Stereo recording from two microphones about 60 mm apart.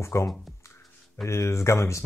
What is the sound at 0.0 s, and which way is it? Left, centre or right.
Speech, left.